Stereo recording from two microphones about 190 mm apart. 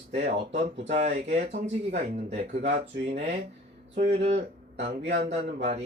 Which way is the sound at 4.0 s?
35° right (ahead or behind).